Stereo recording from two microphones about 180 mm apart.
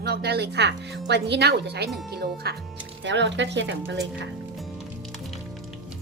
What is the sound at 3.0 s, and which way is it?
Speech, 80° right.